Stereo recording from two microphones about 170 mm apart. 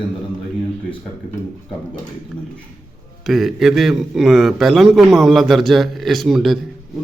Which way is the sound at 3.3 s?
Centre (ahead or behind).